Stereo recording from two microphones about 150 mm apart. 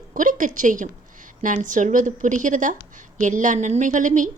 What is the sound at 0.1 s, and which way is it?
A woman's voice, 60° right (ahead or behind).